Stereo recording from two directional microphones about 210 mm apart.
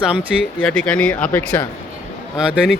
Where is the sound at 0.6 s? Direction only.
5° left (ahead or behind).